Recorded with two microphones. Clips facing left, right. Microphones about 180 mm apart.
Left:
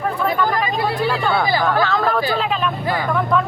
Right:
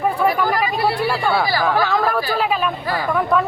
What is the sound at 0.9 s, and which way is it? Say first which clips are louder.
Speech: even; 10° right (ahead or behind).